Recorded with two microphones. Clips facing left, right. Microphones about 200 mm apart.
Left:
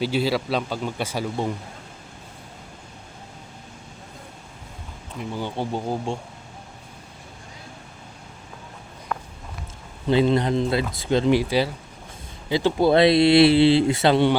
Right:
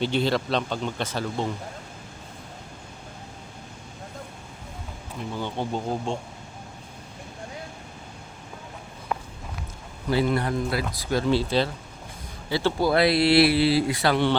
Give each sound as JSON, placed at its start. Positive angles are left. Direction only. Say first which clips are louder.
{"t": 0.0, "sound": "speech", "louder": "left 1 dB", "side_deg": 5}
{"t": 5.4, "sound": "speech", "louder": "left 1 dB", "side_deg": 10}
{"t": 9.1, "sound": "walk", "louder": "even", "side_deg": -15}
{"t": 10.1, "sound": "speech", "louder": "left 4 dB", "side_deg": 20}